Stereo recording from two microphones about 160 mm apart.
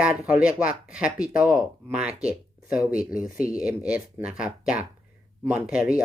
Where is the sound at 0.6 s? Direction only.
60° left (ahead or behind).